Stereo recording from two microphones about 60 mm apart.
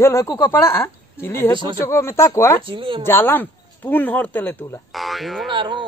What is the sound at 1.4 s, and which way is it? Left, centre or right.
Speech, left.